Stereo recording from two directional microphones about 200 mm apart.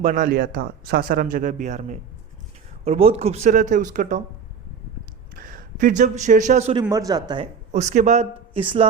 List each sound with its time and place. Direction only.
0.0 s speech: 40° right (ahead or behind)
5.4 s a man's voice: 45° right (ahead or behind)
6.8 s speech: 15° right (ahead or behind)
7.7 s speech: 35° right (ahead or behind)